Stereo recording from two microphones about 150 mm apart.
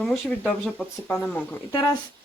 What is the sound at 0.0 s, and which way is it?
Speech, 5° left (ahead or behind).